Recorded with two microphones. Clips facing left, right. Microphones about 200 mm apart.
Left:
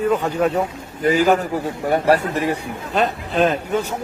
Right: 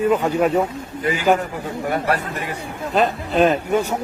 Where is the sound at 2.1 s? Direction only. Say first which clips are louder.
Left 6 dB; 30° left (ahead or behind).